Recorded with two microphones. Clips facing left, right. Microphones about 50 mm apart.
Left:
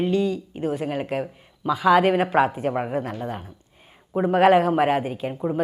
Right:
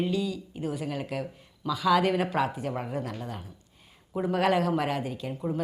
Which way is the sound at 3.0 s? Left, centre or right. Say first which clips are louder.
Left 6 dB; left.